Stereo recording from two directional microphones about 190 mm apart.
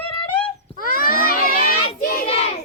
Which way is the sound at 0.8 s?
50° left (ahead or behind).